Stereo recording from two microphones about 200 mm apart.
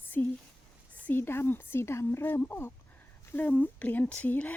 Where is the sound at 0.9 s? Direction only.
10° left (ahead or behind).